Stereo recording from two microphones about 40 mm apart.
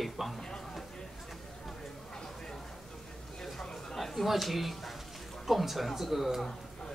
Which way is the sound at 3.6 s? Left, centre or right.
Centre.